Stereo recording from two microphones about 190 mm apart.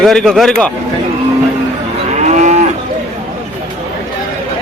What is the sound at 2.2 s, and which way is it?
Moo, 40° right (ahead or behind).